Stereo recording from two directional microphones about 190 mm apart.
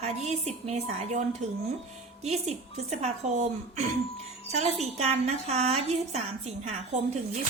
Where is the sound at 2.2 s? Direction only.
35° right (ahead or behind).